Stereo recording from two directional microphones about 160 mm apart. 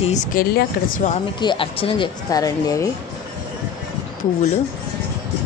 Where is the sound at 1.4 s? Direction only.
30° left (ahead or behind).